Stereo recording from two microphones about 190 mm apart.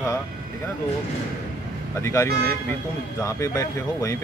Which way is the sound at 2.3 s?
55° right (ahead or behind).